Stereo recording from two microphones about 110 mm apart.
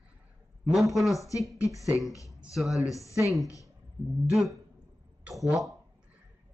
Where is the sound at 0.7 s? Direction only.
Centre (ahead or behind).